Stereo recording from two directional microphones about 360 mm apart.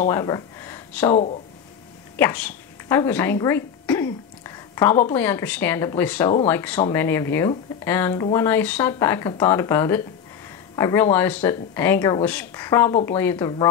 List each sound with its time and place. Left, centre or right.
0.1 s speech: centre
1.1 s speech: centre
2.1 s speech: centre